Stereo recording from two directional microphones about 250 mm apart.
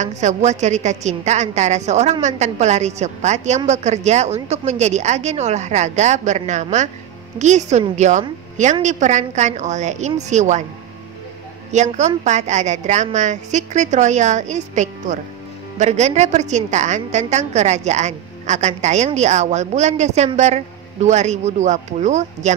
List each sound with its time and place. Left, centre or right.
0.0 s a woman's voice: right
11.7 s a woman's voice: right